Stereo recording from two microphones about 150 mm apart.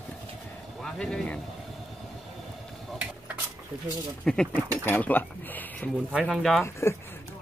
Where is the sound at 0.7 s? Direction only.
5° left (ahead or behind).